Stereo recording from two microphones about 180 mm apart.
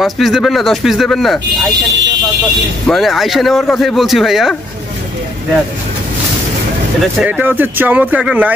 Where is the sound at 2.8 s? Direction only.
Centre (ahead or behind).